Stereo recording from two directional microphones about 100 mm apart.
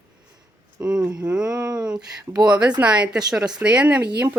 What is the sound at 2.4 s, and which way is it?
Speech, 45° right (ahead or behind).